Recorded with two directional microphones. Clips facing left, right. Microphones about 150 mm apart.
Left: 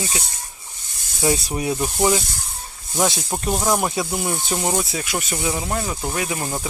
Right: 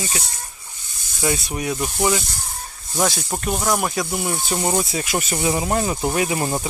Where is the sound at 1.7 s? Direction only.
10° left (ahead or behind).